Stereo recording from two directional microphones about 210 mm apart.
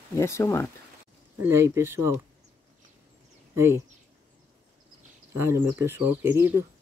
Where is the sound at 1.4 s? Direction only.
15° right (ahead or behind).